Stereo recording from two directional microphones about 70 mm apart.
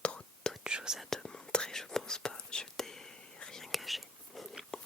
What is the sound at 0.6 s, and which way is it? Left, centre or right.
Whispering, centre.